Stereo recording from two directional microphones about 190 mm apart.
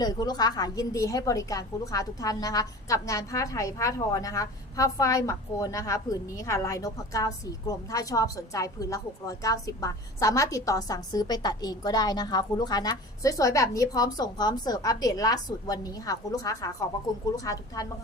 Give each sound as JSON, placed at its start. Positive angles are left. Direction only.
{"t": 0.0, "sound": "a woman's voice", "side_deg": 20}